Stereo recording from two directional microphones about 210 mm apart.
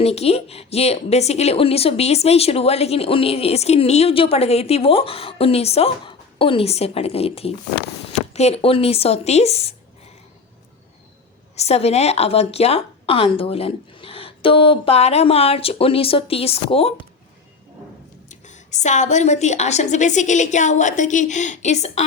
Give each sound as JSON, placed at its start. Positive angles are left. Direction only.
{"t": 0.0, "sound": "speech", "side_deg": 30}
{"t": 11.5, "sound": "speech", "side_deg": 30}
{"t": 18.3, "sound": "a woman's voice", "side_deg": 35}